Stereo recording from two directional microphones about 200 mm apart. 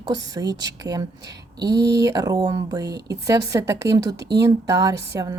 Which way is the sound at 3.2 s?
15° right (ahead or behind).